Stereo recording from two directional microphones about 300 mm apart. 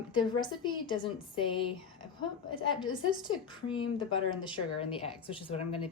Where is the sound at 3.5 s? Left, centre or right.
Centre.